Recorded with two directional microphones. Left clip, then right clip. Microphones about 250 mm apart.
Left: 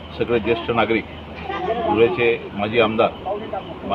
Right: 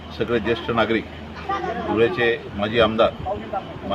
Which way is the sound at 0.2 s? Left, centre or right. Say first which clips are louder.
Left 2 dB; centre.